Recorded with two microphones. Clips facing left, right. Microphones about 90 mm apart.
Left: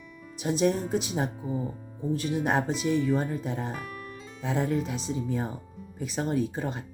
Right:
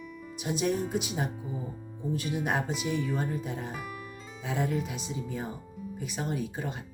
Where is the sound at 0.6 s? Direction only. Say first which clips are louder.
Left 4 dB; 30° left (ahead or behind).